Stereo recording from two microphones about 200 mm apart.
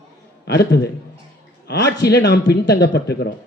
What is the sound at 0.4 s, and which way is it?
A man's voice, 55° left (ahead or behind).